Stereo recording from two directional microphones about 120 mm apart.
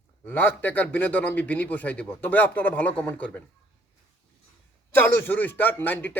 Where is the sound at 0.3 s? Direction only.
15° left (ahead or behind).